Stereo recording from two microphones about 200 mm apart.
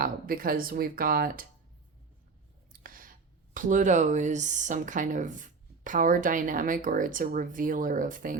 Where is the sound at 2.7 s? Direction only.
45° right (ahead or behind).